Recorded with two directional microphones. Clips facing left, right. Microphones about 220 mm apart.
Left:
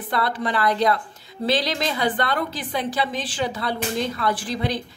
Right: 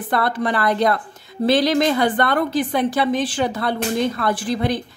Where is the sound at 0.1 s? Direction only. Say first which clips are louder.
Right 4 dB; 50° right (ahead or behind).